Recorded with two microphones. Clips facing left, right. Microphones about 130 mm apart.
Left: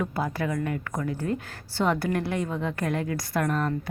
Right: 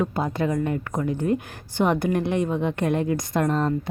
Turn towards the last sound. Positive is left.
turn(degrees=-25)  # may be behind; listen again after turning